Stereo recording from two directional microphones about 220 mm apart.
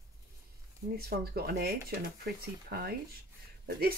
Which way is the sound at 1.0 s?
45° right (ahead or behind).